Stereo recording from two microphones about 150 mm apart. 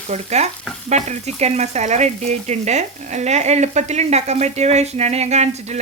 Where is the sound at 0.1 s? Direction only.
50° right (ahead or behind).